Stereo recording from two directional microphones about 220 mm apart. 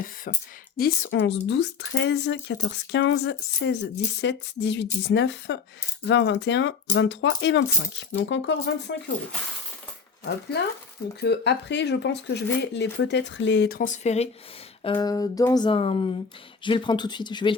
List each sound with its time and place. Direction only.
0.3 s speech: 40° left (ahead or behind)
0.8 s speech: 55° left (ahead or behind)
11.2 s speech: 50° left (ahead or behind); by 14.3 s 30° left (ahead or behind)
14.8 s a sound: 20° left (ahead or behind)